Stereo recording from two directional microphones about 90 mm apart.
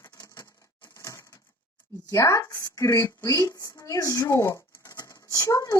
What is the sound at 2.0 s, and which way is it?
A woman's voice, 35° left (ahead or behind).